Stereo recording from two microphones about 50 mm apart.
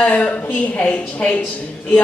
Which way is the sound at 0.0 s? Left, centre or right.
Left.